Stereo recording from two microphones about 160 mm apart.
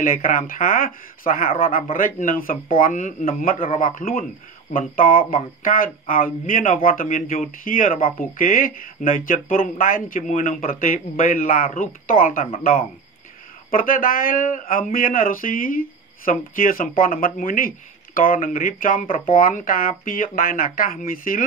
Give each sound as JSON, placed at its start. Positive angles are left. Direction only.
{"t": 0.0, "sound": "speech", "side_deg": 60}
{"t": 13.7, "sound": "speech", "side_deg": 60}